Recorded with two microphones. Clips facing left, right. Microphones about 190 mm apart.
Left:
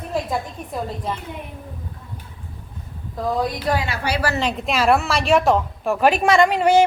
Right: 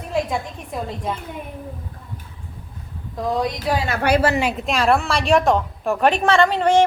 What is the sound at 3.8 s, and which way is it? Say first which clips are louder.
Speech: right 6 dB; 50° right (ahead or behind).